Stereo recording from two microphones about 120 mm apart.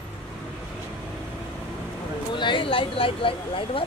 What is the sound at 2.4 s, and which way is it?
Speech, 45° left (ahead or behind).